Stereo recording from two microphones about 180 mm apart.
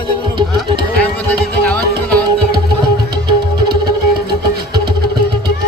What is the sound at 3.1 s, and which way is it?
Music, 25° right (ahead or behind).